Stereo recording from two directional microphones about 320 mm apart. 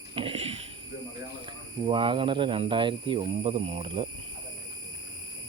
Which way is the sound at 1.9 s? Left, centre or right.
Centre.